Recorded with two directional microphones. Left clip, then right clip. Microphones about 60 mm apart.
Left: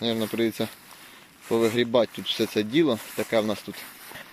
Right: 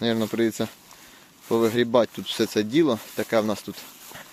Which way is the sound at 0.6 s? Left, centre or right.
Right.